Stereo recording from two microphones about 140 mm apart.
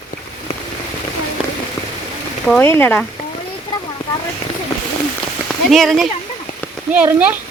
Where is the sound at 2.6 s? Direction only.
15° left (ahead or behind).